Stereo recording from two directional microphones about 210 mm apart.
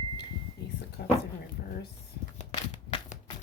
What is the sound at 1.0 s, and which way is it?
Speech, 50° left (ahead or behind).